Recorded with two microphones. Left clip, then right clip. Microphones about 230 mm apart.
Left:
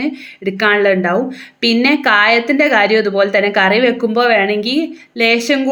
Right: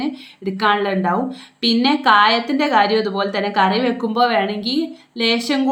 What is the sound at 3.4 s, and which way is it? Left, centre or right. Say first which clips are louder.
Speech: left 4 dB; right.